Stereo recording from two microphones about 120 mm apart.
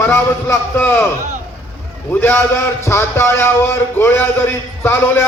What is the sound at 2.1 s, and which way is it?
A man's voice, 15° left (ahead or behind).